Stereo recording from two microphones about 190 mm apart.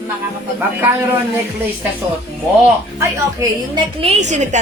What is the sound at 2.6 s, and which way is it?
A woman's voice, 15° right (ahead or behind).